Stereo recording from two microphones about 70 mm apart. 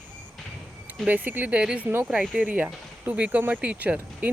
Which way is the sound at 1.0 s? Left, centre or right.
Right.